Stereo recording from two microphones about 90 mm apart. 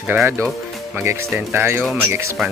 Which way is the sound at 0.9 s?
30° right (ahead or behind).